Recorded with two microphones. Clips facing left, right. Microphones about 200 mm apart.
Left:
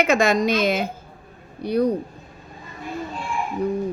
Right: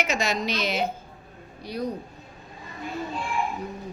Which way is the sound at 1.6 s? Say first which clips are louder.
Left 10 dB; 60° left (ahead or behind).